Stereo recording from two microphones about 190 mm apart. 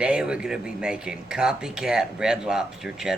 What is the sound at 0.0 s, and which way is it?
Speech, 5° right (ahead or behind).